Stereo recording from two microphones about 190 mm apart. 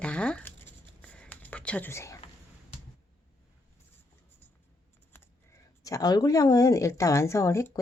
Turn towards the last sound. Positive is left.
turn(degrees=15)  # may be behind; listen again after turning